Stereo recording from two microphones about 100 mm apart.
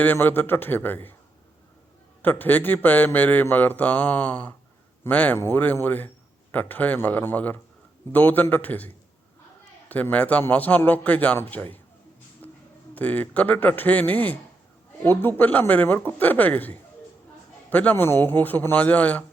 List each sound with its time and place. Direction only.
0.0 s a man's voice: 20° left (ahead or behind)
2.2 s a man's voice: 20° left (ahead or behind)
12.9 s speech: 15° left (ahead or behind)